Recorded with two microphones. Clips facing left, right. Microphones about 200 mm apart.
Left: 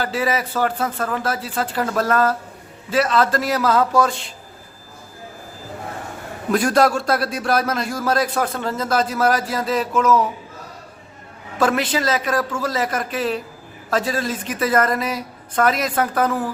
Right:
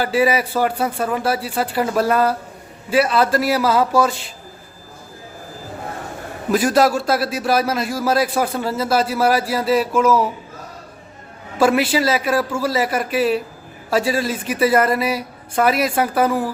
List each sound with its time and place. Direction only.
0.0 s a man's voice: 10° right (ahead or behind)
6.5 s a man's voice: 5° right (ahead or behind)
11.6 s a man's voice: 10° right (ahead or behind)